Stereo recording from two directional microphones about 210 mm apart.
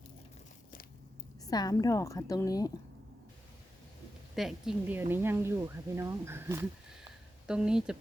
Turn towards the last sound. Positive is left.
turn(degrees=-5)  # may be behind; listen again after turning